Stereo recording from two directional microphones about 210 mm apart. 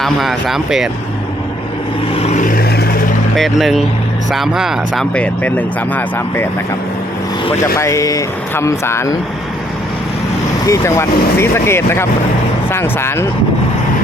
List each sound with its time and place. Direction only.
0.0 s speech: centre (ahead or behind)
2.1 s vehicle: 35° left (ahead or behind); by 2.9 s 50° left (ahead or behind)
3.3 s speech: centre (ahead or behind)
7.8 s speech: 15° left (ahead or behind)
10.7 s speech: 15° left (ahead or behind)